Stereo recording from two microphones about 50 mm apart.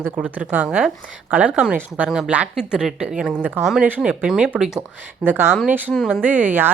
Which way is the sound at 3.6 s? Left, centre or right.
Right.